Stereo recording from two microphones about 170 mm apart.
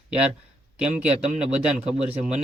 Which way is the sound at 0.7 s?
5° right (ahead or behind).